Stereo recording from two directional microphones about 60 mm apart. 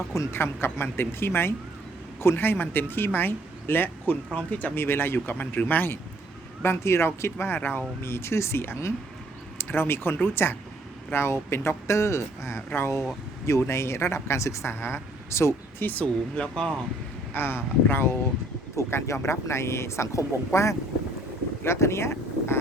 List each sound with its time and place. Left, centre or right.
0.3 s speech: left
4.8 s speech: left
6.6 s speech: left
15.8 s speech: left
16.4 s speech: centre
17.3 s speech: left
18.8 s speech: left